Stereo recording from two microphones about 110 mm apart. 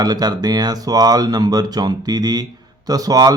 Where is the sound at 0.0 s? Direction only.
35° right (ahead or behind).